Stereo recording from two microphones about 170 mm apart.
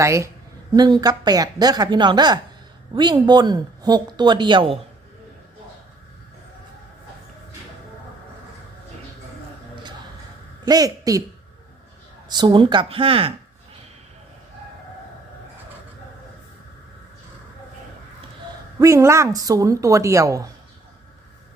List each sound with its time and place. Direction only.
0.0 s a woman's voice: 15° right (ahead or behind)
10.7 s speech: 20° right (ahead or behind)
12.3 s speech: 25° right (ahead or behind)
18.8 s speech: 15° right (ahead or behind)